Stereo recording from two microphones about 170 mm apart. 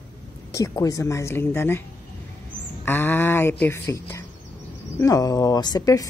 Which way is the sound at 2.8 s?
10° left (ahead or behind).